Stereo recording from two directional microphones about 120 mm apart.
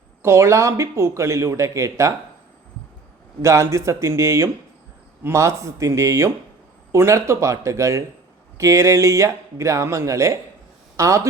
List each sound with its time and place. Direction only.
0.2 s speech: 25° right (ahead or behind)
3.4 s speech: 25° right (ahead or behind)